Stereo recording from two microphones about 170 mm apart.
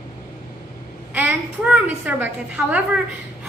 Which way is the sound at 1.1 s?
10° right (ahead or behind).